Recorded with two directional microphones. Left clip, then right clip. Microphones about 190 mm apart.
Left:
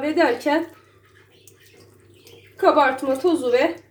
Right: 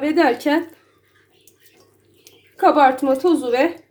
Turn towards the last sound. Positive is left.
turn(degrees=-55)  # may be behind; listen again after turning